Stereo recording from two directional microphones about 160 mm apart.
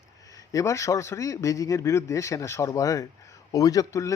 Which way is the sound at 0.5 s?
20° left (ahead or behind).